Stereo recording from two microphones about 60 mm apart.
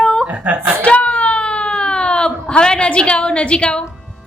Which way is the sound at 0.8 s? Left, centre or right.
Left.